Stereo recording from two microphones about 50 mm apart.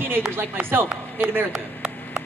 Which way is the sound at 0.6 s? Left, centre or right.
Right.